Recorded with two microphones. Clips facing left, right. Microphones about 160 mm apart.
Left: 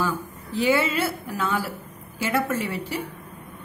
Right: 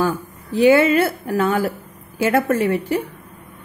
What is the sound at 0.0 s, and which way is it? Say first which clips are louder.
A woman's voice: right 6 dB; 50° right (ahead or behind).